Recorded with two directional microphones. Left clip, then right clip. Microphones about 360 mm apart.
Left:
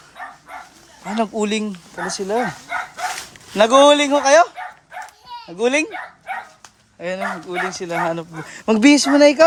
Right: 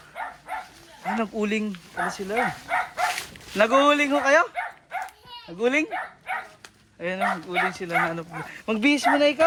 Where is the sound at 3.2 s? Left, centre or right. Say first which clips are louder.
Left 10 dB; centre.